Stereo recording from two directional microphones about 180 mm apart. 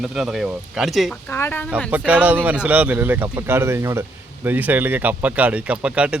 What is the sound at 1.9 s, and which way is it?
Speech, 10° right (ahead or behind).